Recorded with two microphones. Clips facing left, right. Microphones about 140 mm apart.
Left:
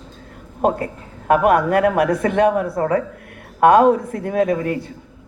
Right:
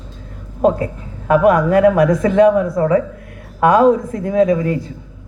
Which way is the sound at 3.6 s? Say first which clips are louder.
Right 1 dB; 55° left (ahead or behind).